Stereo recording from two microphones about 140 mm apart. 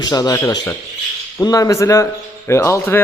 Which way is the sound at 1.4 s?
25° left (ahead or behind).